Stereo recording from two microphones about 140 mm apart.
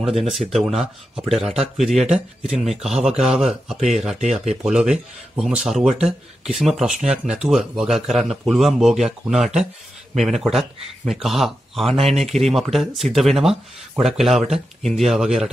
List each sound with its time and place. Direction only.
0.3 s speech: centre (ahead or behind)